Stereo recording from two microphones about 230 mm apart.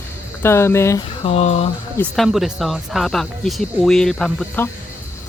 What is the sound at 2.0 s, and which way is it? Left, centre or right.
Speech, centre.